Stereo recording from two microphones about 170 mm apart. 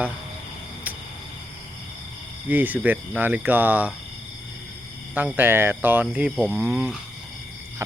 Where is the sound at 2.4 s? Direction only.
10° right (ahead or behind).